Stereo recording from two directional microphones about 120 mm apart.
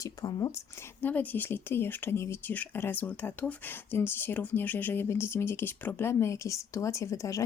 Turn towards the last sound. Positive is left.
turn(degrees=25)  # may be behind; listen again after turning